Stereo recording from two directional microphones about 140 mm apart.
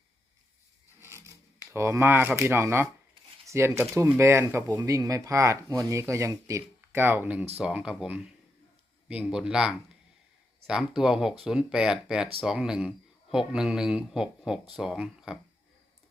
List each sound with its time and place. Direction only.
1.7 s speech: 20° right (ahead or behind)